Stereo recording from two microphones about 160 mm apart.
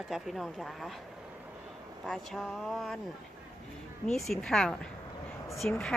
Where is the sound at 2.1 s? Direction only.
Centre (ahead or behind).